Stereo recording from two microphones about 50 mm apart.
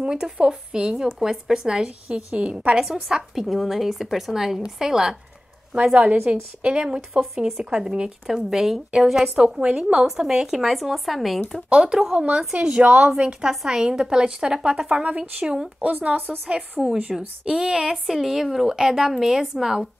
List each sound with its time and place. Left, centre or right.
0.0 s a woman's voice: centre
2.8 s a woman's voice: centre
6.2 s a woman's voice: centre
7.3 s a woman's voice: centre
11.7 s a woman's voice: centre
15.0 s a woman's voice: right
15.4 s a woman's voice: centre
15.8 s a woman's voice: right
16.8 s speech: centre
17.5 s a woman's voice: centre